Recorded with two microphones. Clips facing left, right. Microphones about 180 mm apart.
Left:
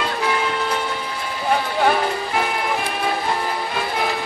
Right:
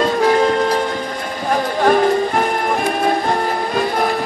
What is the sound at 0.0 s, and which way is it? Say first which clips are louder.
Music: right 9 dB; 40° right (ahead or behind).